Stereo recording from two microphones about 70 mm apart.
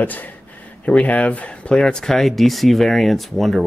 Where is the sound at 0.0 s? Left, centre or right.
Left.